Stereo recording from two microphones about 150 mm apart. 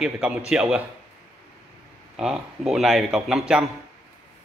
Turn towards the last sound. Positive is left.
turn(degrees=-5)  # may be behind; listen again after turning